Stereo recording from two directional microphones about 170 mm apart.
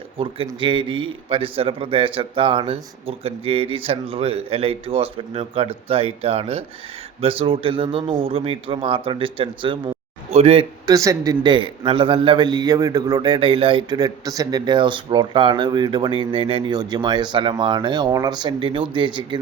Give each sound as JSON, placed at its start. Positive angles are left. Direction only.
{"t": 0.4, "sound": "a man's voice", "side_deg": -30}
{"t": 10.9, "sound": "a man's voice", "side_deg": -20}